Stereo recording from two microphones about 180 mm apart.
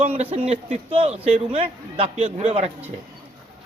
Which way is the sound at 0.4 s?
35° right (ahead or behind).